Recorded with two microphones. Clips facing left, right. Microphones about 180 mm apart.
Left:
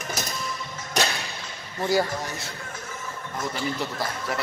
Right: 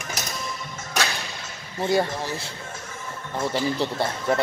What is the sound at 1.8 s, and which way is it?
Speech, 25° right (ahead or behind).